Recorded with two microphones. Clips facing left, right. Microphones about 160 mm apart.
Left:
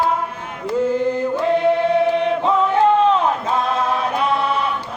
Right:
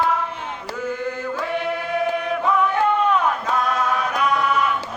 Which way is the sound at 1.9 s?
25° left (ahead or behind).